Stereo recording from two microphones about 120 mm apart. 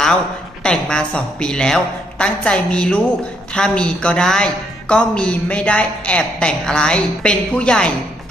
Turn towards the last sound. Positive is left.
turn(degrees=10)  # may be behind; listen again after turning